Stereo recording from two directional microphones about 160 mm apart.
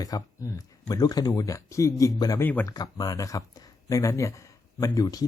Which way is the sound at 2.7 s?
25° left (ahead or behind).